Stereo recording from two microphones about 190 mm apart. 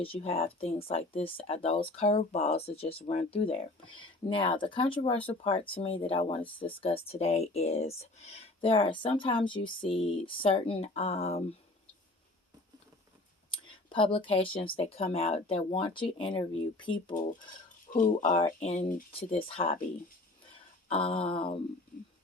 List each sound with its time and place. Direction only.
0.0 s speech: 30° left (ahead or behind)
13.5 s speech: 25° left (ahead or behind)
18.2 s speech: 35° left (ahead or behind)
19.5 s speech: 30° left (ahead or behind)
20.8 s speech: 30° left (ahead or behind)